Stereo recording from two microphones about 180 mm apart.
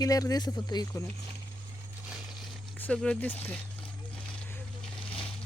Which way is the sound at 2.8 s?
5° left (ahead or behind).